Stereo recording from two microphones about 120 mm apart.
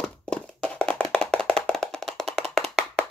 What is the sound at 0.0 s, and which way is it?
Clapping, 5° left (ahead or behind).